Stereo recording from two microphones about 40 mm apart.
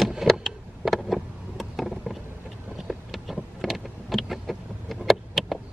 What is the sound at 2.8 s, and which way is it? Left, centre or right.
Vehicle, centre.